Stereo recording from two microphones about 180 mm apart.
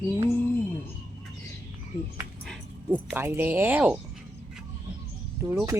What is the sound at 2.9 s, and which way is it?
Speech, 10° right (ahead or behind).